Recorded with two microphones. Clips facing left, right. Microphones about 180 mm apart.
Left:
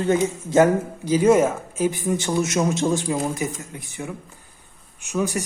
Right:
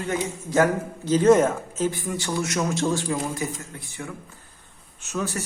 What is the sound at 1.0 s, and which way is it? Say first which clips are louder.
A man's voice: even; 10° left (ahead or behind).